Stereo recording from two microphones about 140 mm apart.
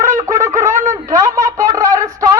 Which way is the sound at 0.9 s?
20° right (ahead or behind).